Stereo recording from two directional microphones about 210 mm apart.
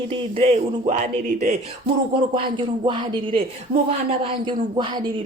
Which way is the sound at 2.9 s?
25° right (ahead or behind).